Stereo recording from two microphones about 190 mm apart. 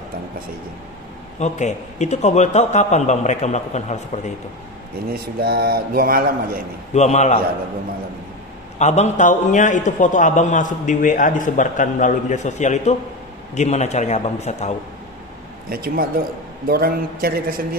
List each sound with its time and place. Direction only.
1.4 s a man's voice: 35° left (ahead or behind)
5.1 s a man's voice: 50° right (ahead or behind)
6.9 s a man's voice: 35° left (ahead or behind)
8.7 s a man's voice: 35° left (ahead or behind)
15.7 s a man's voice: 50° right (ahead or behind)